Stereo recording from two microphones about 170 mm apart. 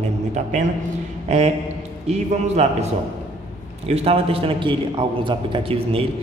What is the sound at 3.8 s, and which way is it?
A man's voice, 35° right (ahead or behind).